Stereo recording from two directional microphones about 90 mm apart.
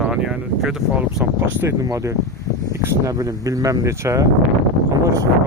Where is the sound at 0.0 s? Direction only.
10° right (ahead or behind).